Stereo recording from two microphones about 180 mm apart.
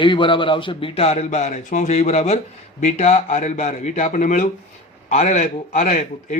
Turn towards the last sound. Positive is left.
turn(degrees=40)  # may be behind; listen again after turning